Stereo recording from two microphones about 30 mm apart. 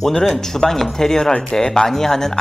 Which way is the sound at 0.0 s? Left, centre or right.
Centre.